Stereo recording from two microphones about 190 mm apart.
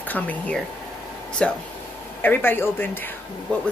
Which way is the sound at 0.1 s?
10° left (ahead or behind).